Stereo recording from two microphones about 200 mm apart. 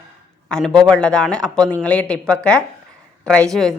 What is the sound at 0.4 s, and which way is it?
A man's voice, 5° left (ahead or behind).